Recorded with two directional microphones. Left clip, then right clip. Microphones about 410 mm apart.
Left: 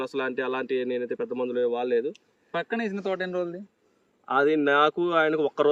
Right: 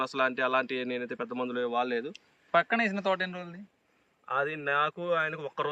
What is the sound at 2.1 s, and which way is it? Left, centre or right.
A man's voice, centre.